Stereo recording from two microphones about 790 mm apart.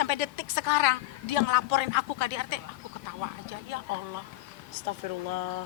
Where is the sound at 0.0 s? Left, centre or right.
Left.